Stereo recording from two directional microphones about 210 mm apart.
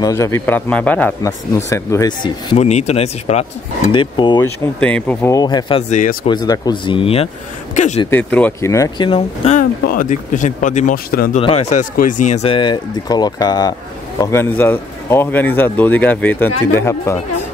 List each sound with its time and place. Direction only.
0.0 s a man's voice: 15° left (ahead or behind)
4.7 s speech: 5° left (ahead or behind); by 6.1 s 35° left (ahead or behind)
6.2 s speech: 20° left (ahead or behind); by 8.0 s 35° left (ahead or behind)
8.1 s a man's voice: 5° left (ahead or behind); by 11.2 s 40° left (ahead or behind)
11.3 s a man's voice: 30° left (ahead or behind); by 17.2 s 15° left (ahead or behind)